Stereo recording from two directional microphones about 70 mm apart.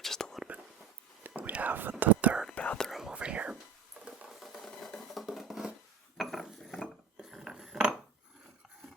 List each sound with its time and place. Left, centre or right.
0.0 s whispering: centre
1.4 s whispering: right
2.6 s whispering: centre
2.8 s whispering: centre
4.1 s a sound: centre
6.1 s dishes: centre
7.2 s a sound: centre